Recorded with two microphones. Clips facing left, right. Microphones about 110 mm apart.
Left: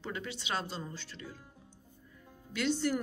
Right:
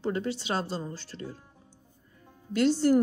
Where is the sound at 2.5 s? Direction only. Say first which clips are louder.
Right 8 dB; 40° right (ahead or behind).